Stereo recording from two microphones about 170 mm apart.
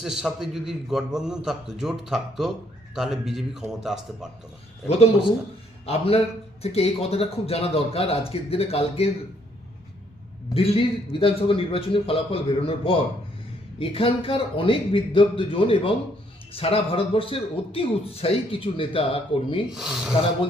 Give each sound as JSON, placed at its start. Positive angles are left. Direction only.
{"t": 0.0, "sound": "a man's voice", "side_deg": -5}
{"t": 4.9, "sound": "a man's voice", "side_deg": 40}
{"t": 10.5, "sound": "a man's voice", "side_deg": 35}
{"t": 19.7, "sound": "a man's voice", "side_deg": 0}